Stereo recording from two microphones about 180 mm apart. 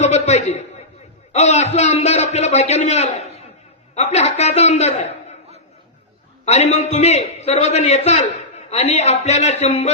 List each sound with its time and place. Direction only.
0.0 s a man's voice: 40° left (ahead or behind)
6.4 s a man's voice: 40° left (ahead or behind)